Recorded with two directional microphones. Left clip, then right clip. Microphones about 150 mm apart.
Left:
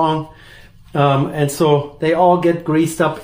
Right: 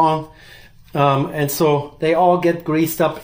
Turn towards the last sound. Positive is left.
turn(degrees=-30)  # may be behind; listen again after turning